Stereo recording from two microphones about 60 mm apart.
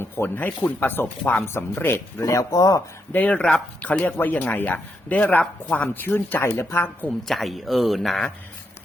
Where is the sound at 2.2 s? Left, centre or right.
Left.